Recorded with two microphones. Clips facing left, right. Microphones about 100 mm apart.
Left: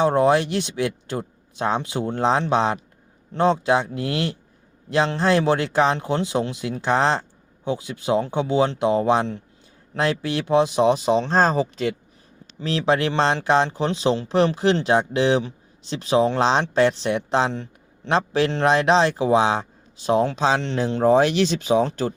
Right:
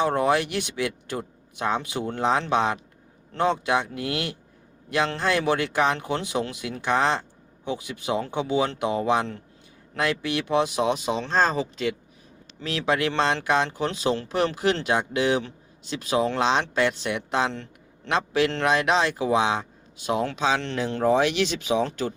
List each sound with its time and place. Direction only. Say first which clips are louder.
0.0 s speech: left 4 dB; 25° left (ahead or behind)
17.5 s a sound: left 5 dB; 20° left (ahead or behind)
18.1 s speech: left 3 dB; 35° left (ahead or behind)